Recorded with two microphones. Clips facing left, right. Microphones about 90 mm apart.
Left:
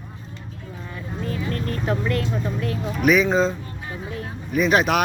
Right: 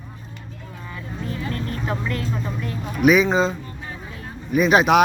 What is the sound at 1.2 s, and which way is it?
Speech, 50° left (ahead or behind).